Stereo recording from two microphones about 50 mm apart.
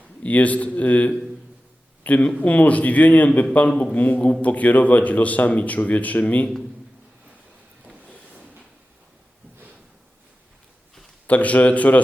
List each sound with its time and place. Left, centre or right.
0.2 s a man's voice: left
11.3 s a man's voice: left